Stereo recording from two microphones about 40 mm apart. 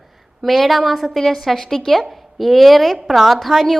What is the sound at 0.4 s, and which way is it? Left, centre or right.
A woman's voice, centre.